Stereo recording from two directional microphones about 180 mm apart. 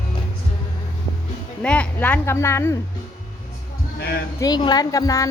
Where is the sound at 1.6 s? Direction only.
5° left (ahead or behind).